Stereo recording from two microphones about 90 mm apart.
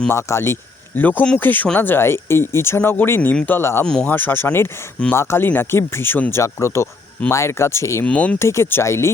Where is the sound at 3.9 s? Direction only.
10° left (ahead or behind).